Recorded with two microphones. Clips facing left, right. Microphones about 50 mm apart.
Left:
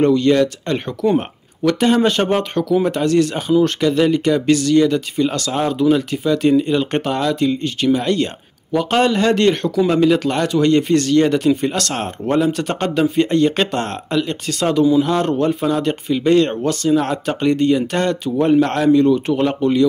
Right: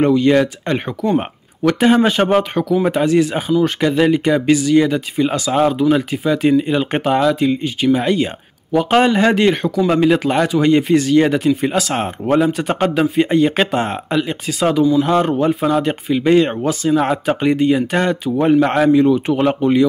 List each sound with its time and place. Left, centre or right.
0.0 s speech: centre